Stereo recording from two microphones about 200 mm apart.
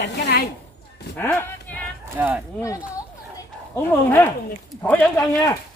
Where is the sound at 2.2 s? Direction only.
10° right (ahead or behind).